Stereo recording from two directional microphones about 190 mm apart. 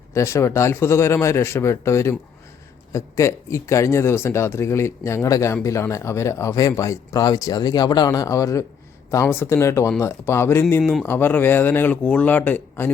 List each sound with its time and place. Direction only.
0.1 s speech: 15° left (ahead or behind)